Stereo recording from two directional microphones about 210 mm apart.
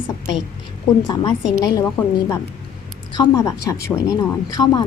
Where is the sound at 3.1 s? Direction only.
15° left (ahead or behind).